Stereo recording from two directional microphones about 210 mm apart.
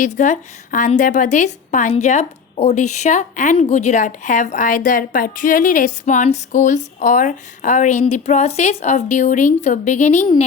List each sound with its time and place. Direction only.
0.0 s a woman's voice: 35° left (ahead or behind)